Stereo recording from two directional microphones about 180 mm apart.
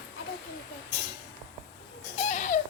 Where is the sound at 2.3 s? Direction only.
45° left (ahead or behind).